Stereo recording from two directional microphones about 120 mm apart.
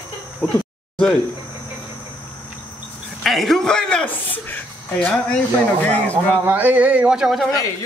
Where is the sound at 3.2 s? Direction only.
Centre (ahead or behind).